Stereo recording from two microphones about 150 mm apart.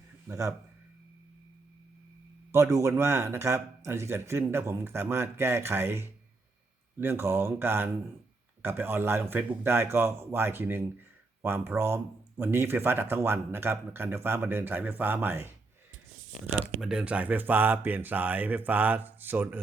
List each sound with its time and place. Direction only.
0.3 s speech: 20° right (ahead or behind)
2.5 s speech: 20° right (ahead or behind)
16.6 s speech: 5° right (ahead or behind)